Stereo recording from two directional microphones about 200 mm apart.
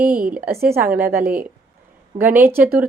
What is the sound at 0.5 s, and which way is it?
Speech, 50° right (ahead or behind).